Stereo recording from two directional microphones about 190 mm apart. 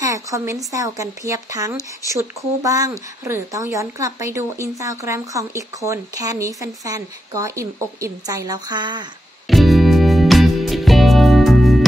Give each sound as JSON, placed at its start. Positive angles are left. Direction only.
{"t": 0.0, "sound": "speech", "side_deg": -15}
{"t": 9.5, "sound": "music", "side_deg": 0}